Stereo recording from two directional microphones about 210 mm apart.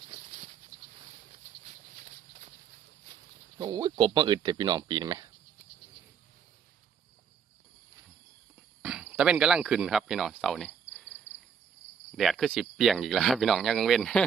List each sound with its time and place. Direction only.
0.1 s patter: 25° right (ahead or behind)
3.6 s speech: 20° right (ahead or behind)
8.8 s speech: 5° right (ahead or behind)